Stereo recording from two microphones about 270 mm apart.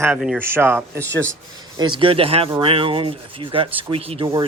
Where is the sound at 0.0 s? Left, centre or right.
Centre.